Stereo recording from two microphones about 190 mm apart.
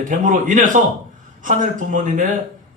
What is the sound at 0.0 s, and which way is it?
A man's voice, 45° right (ahead or behind).